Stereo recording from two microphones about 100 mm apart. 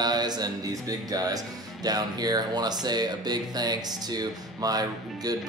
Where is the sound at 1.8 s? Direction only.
40° right (ahead or behind).